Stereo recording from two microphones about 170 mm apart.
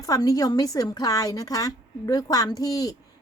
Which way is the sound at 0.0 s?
20° left (ahead or behind).